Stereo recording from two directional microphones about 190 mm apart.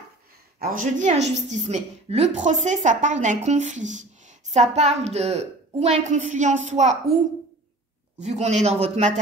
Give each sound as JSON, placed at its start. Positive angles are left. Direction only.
{"t": 0.6, "sound": "a woman's voice", "side_deg": -45}
{"t": 8.2, "sound": "a woman's voice", "side_deg": -35}